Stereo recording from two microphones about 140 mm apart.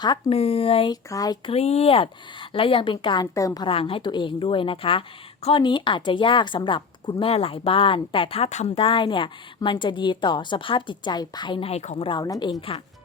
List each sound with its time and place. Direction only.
0.0 s a woman's voice: 30° left (ahead or behind)
0.3 s speech: 45° left (ahead or behind)
1.1 s speech: 25° left (ahead or behind)
1.5 s a woman's voice: 50° left (ahead or behind); by 3.7 s 25° left (ahead or behind)
3.7 s a woman's voice: 40° left (ahead or behind)
12.0 s speech: 30° left (ahead or behind)